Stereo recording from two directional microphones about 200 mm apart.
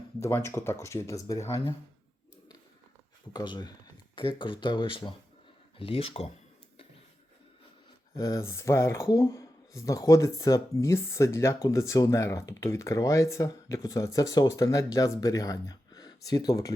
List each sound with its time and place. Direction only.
0.2 s speech: 15° left (ahead or behind)
3.3 s speech: 20° left (ahead or behind)
8.2 s speech: 15° left (ahead or behind)